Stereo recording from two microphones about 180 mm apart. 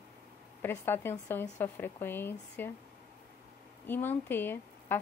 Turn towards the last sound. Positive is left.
turn(degrees=10)  # may be behind; listen again after turning